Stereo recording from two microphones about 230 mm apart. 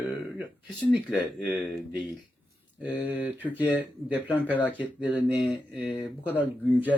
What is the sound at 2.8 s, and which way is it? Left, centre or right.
Speech, centre.